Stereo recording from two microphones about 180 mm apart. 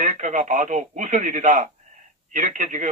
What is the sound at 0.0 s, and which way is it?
Speech, 45° right (ahead or behind).